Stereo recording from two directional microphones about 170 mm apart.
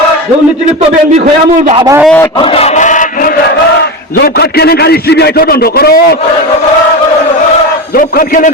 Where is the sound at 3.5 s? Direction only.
70° left (ahead or behind).